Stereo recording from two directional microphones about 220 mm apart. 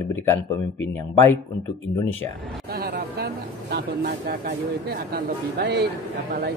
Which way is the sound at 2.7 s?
45° right (ahead or behind).